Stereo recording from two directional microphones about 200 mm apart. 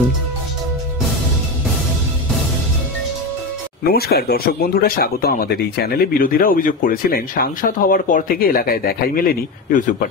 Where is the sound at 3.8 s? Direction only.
50° left (ahead or behind).